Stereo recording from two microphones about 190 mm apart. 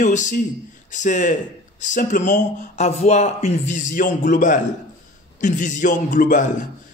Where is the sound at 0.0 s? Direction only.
40° left (ahead or behind).